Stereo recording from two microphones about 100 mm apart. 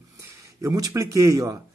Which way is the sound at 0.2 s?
30° right (ahead or behind).